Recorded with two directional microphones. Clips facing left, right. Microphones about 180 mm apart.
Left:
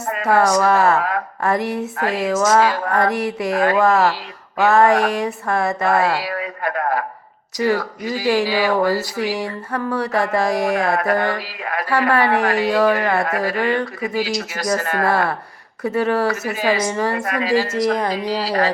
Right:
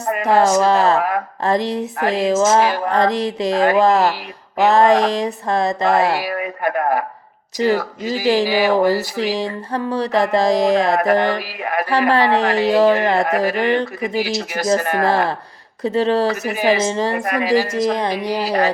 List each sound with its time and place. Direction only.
0.0 s a woman's voice: 20° right (ahead or behind)
7.6 s a woman's voice: 20° right (ahead or behind)